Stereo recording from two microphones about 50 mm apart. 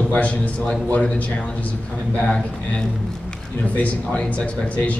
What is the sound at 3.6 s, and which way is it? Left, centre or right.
A man's voice, left.